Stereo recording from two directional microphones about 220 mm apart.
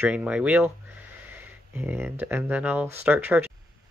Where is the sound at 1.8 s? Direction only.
10° right (ahead or behind).